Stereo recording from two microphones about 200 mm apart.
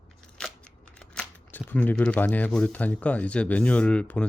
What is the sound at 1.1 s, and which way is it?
Speech, 5° left (ahead or behind).